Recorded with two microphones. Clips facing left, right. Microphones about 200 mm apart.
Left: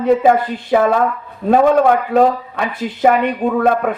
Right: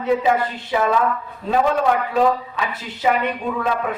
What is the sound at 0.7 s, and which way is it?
Speech, 50° left (ahead or behind).